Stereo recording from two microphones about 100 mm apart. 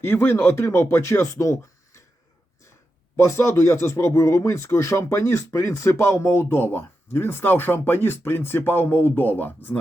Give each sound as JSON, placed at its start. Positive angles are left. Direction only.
{"t": 0.0, "sound": "speech", "side_deg": 20}
{"t": 3.2, "sound": "speech", "side_deg": 30}